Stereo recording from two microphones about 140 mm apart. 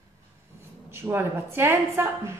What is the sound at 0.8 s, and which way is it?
A woman's voice, 15° right (ahead or behind).